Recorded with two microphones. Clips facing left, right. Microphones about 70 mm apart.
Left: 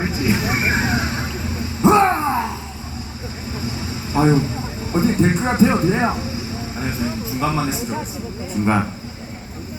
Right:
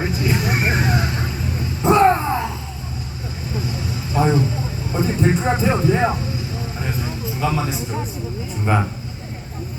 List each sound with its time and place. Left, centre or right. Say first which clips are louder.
0.0 s vehicle: left 1 dB; centre
1.8 s a sound: even; centre
4.1 s speech: left 2 dB; centre